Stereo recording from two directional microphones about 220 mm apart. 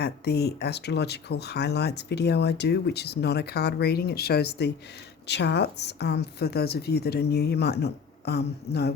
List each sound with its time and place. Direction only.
0.0 s speech: 45° left (ahead or behind)